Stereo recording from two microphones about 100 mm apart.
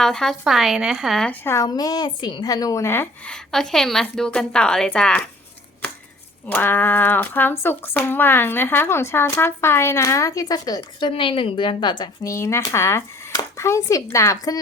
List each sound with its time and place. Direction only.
0.0 s a woman's voice: 5° left (ahead or behind)
1.5 s a woman's voice: 40° left (ahead or behind)
2.8 s speech: 20° left (ahead or behind)
3.2 s a woman's voice: 5° left (ahead or behind)
6.5 s speech: 20° left (ahead or behind); by 11.1 s 40° left (ahead or behind)
11.1 s a woman's voice: 60° left (ahead or behind)
12.2 s a woman's voice: 30° left (ahead or behind)